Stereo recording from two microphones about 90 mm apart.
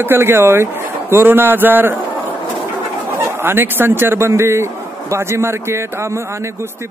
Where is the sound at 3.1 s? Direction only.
30° right (ahead or behind).